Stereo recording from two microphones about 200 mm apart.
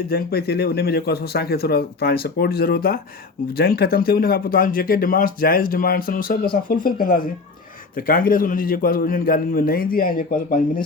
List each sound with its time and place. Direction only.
0.1 s speech: 50° left (ahead or behind)